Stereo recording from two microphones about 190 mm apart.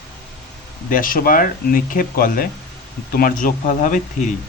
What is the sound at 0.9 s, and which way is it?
Speech, 45° left (ahead or behind).